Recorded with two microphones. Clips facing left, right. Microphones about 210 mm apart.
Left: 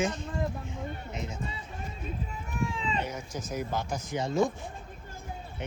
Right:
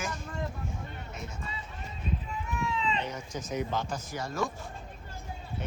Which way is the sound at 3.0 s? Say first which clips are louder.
Even; 5° left (ahead or behind).